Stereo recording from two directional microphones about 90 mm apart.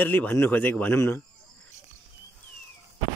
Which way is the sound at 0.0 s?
20° left (ahead or behind).